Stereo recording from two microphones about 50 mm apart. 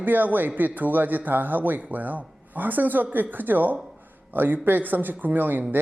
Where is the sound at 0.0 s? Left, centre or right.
Right.